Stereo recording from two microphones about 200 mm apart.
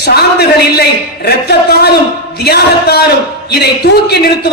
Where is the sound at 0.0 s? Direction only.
55° left (ahead or behind).